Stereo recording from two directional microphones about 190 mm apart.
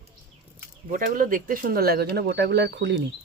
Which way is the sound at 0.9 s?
45° right (ahead or behind).